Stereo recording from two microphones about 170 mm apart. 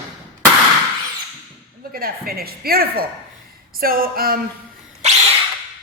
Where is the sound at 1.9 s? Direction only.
60° right (ahead or behind).